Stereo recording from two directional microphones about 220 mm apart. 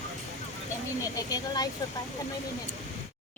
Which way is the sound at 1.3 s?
15° left (ahead or behind).